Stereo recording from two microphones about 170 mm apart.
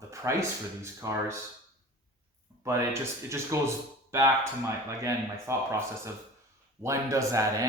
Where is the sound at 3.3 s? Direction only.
15° right (ahead or behind).